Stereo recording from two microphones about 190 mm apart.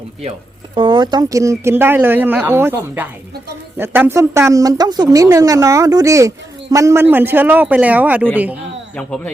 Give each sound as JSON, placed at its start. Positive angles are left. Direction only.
{"t": 0.7, "sound": "a woman's voice", "side_deg": -25}
{"t": 9.0, "sound": "speech", "side_deg": 5}